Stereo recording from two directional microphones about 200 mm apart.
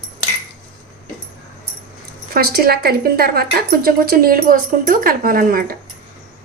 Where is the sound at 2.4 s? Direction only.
50° right (ahead or behind).